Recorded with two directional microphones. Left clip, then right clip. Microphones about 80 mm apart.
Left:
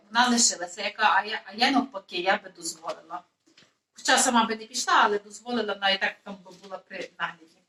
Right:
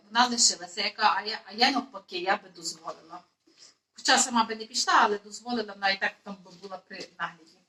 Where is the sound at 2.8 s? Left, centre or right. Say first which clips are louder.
Left 5 dB; left.